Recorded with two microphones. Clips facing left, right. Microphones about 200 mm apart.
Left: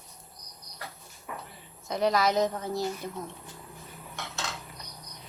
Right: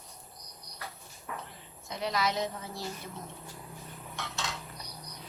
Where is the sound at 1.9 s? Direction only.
50° left (ahead or behind).